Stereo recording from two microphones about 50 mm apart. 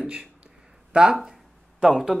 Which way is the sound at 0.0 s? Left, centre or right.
Centre.